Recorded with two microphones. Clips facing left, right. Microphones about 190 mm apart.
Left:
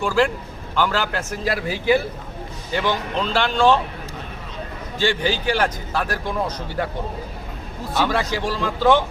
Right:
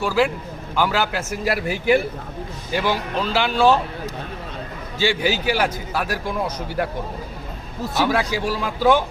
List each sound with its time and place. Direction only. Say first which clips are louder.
0.0 s a man's voice: even; 5° right (ahead or behind)
2.7 s a man's voice: even; 10° right (ahead or behind)
4.9 s a man's voice: right 1 dB; 10° right (ahead or behind)
8.0 s a man's voice: right 2 dB; 10° right (ahead or behind)